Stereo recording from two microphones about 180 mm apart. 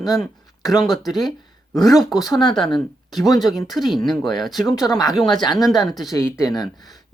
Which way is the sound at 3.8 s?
Centre (ahead or behind).